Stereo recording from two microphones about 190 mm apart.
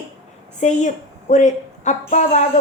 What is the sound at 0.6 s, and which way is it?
A woman's voice, 35° left (ahead or behind).